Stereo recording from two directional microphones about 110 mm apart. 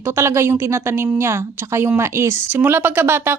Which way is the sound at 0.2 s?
25° right (ahead or behind).